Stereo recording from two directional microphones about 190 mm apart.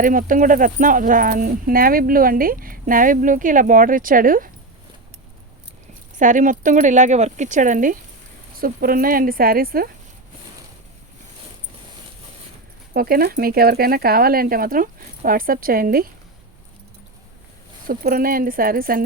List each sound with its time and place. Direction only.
0.0 s speech: 45° right (ahead or behind)
6.1 s speech: 45° right (ahead or behind)
12.9 s speech: 50° right (ahead or behind)
17.8 s speech: 50° right (ahead or behind)